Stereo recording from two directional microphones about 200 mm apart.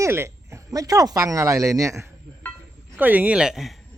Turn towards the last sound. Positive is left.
turn(degrees=0)  # may be behind; listen again after turning